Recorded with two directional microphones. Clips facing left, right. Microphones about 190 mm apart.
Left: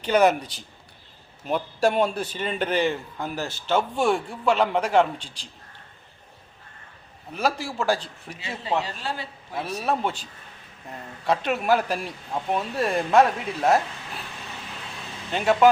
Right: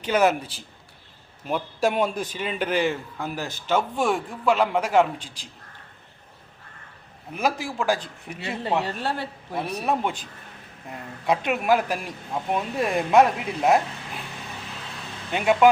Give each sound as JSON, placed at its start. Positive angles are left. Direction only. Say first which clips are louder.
{"t": 0.0, "sound": "a man's voice", "louder": "left 1 dB", "side_deg": -5}
{"t": 7.3, "sound": "a man's voice", "louder": "even", "side_deg": -10}
{"t": 8.3, "sound": "a man's voice", "louder": "right 2 dB", "side_deg": -60}
{"t": 9.8, "sound": "a man's voice", "louder": "left 1 dB", "side_deg": -10}
{"t": 12.3, "sound": "speech", "louder": "even", "side_deg": 0}
{"t": 12.7, "sound": "a man's voice", "louder": "right 1 dB", "side_deg": -10}
{"t": 15.3, "sound": "a man's voice", "louder": "even", "side_deg": -10}